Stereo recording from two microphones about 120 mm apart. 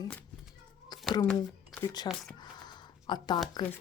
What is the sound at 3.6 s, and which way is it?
Speech, 35° left (ahead or behind).